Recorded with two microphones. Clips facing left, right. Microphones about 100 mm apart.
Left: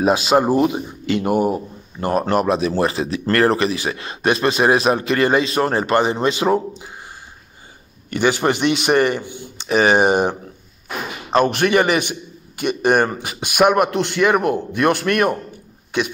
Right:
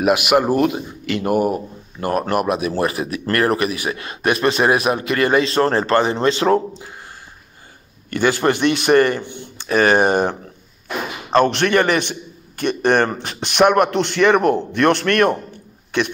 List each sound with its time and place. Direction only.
0.0 s speech: 25° left (ahead or behind)
8.1 s a man's voice: 20° left (ahead or behind)